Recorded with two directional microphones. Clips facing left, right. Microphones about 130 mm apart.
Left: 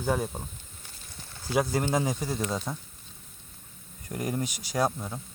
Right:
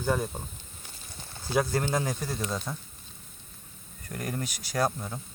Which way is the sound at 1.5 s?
10° left (ahead or behind).